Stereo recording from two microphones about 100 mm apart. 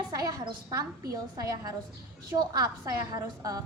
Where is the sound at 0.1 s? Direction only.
35° right (ahead or behind).